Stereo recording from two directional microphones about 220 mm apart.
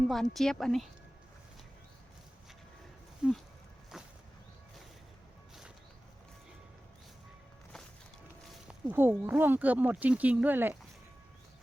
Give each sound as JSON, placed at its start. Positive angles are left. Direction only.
{"t": 0.1, "sound": "speech", "side_deg": 0}
{"t": 3.2, "sound": "speech", "side_deg": -5}
{"t": 3.9, "sound": "a sound", "side_deg": 0}
{"t": 8.6, "sound": "speech", "side_deg": -10}